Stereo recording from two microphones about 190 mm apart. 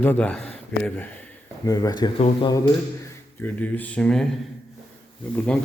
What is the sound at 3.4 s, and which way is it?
Speech, 10° left (ahead or behind).